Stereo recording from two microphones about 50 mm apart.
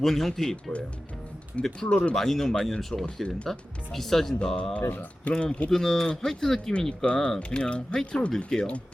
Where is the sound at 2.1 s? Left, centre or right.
Centre.